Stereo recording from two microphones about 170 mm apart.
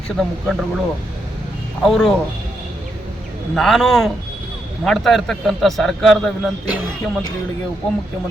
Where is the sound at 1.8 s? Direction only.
Centre (ahead or behind).